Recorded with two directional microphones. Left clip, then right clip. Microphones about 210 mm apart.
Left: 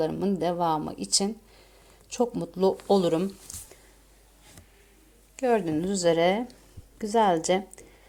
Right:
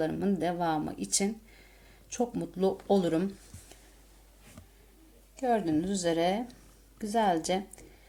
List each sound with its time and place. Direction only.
0.0 s a woman's voice: 15° left (ahead or behind)
3.5 s a sound: 45° left (ahead or behind)
5.4 s speech: 20° left (ahead or behind)